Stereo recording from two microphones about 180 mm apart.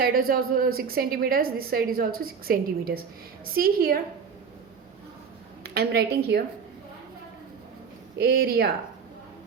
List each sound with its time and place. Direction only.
0.0 s a woman's voice: 55° right (ahead or behind)
5.7 s a woman's voice: 60° right (ahead or behind)
8.2 s a woman's voice: 60° right (ahead or behind)